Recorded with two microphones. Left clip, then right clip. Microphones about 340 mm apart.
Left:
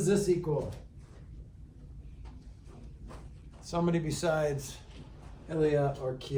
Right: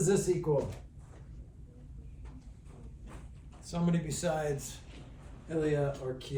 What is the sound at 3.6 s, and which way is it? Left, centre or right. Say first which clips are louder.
Speech: left 5 dB; centre.